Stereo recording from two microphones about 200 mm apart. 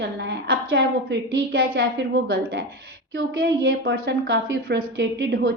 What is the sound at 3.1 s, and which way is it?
A woman's voice, 65° right (ahead or behind).